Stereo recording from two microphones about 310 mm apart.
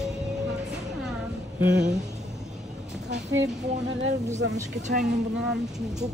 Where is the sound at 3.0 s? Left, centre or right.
Right.